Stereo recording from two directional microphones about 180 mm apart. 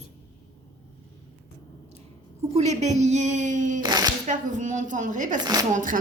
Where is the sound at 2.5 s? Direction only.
40° right (ahead or behind).